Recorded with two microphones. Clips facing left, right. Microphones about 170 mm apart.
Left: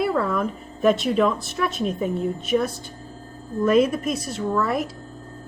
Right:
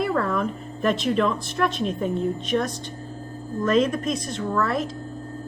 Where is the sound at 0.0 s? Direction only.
5° left (ahead or behind).